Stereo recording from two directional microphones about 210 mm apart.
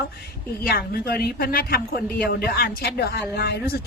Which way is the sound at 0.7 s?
45° left (ahead or behind).